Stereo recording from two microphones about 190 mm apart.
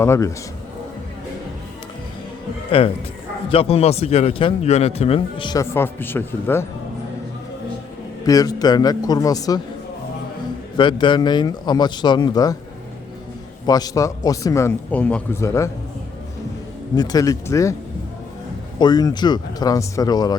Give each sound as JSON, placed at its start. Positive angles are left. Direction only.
{"t": 0.0, "sound": "a man's voice", "side_deg": 15}
{"t": 2.8, "sound": "a man's voice", "side_deg": 30}
{"t": 5.7, "sound": "a man's voice", "side_deg": 10}
{"t": 8.2, "sound": "speech", "side_deg": 20}
{"t": 10.8, "sound": "speech", "side_deg": 25}
{"t": 13.7, "sound": "a man's voice", "side_deg": 20}
{"t": 16.9, "sound": "speech", "side_deg": 20}
{"t": 18.8, "sound": "speech", "side_deg": 20}